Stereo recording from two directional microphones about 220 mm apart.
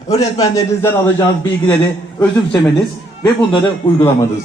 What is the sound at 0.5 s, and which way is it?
A man's voice, 10° left (ahead or behind).